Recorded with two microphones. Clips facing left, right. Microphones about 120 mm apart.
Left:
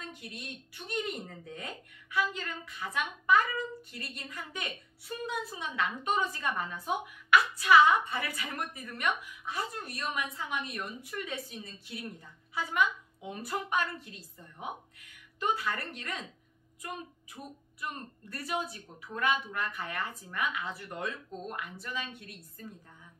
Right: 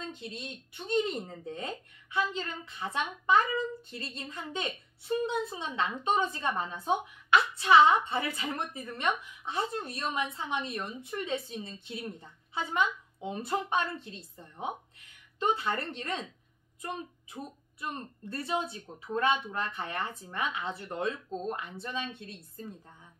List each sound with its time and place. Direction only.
0.0 s a woman's voice: 25° right (ahead or behind)